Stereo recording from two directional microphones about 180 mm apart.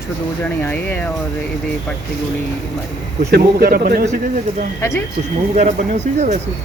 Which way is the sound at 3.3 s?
60° right (ahead or behind).